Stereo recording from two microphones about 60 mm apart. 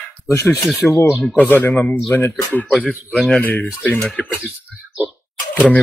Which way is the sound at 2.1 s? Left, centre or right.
Left.